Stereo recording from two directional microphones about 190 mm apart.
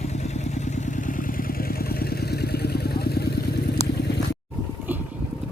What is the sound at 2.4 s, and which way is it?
Vehicle, 55° left (ahead or behind).